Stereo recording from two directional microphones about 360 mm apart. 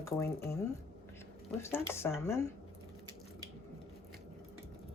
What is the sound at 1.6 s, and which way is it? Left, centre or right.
Speech, centre.